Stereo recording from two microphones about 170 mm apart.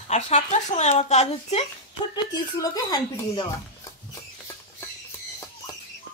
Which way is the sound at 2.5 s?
20° left (ahead or behind).